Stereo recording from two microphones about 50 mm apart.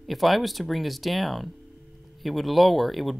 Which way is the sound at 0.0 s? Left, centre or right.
Centre.